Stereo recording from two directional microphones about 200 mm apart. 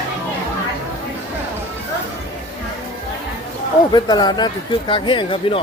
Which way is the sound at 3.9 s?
20° left (ahead or behind).